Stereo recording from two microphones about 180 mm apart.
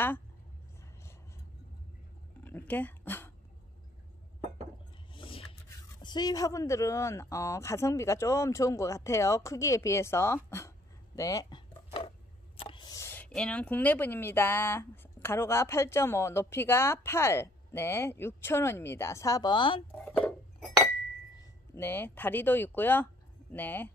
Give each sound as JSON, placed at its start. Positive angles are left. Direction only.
{"t": 2.4, "sound": "dog", "side_deg": 10}
{"t": 5.1, "sound": "a sound", "side_deg": 30}
{"t": 5.7, "sound": "speech", "side_deg": 25}
{"t": 11.1, "sound": "chopping", "side_deg": 20}
{"t": 12.5, "sound": "speech", "side_deg": 25}
{"t": 20.1, "sound": "cutlery", "side_deg": 5}
{"t": 21.4, "sound": "speech", "side_deg": 10}